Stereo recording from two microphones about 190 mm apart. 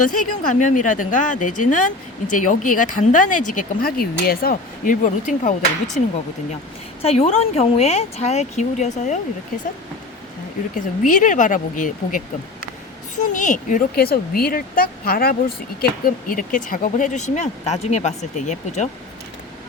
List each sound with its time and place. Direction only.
0.0 s speech: 45° left (ahead or behind)
7.0 s speech: 30° left (ahead or behind)
10.8 s speech: 45° left (ahead or behind)